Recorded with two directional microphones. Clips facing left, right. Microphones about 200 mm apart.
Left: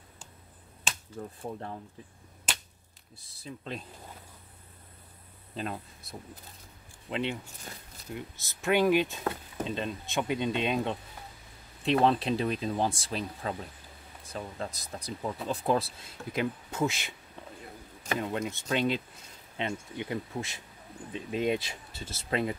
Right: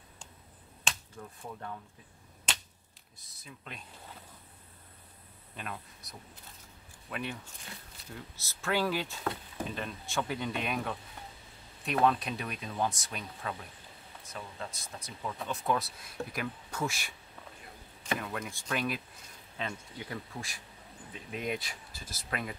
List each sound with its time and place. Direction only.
1.1 s speech: 35° left (ahead or behind)
3.3 s speech: 30° left (ahead or behind)
5.5 s speech: 30° left (ahead or behind)
18.2 s speech: 25° left (ahead or behind)